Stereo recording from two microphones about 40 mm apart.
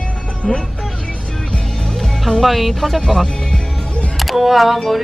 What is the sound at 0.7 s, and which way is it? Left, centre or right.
Music, centre.